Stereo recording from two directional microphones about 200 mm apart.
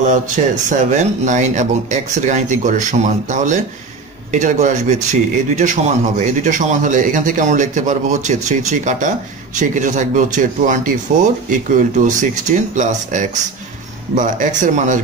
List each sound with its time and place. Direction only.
0.0 s a man's voice: 40° right (ahead or behind)